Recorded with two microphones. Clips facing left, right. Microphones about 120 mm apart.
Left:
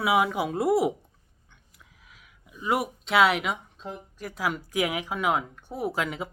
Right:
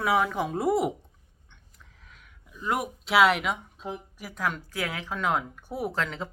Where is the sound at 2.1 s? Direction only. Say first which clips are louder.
Even; 5° left (ahead or behind).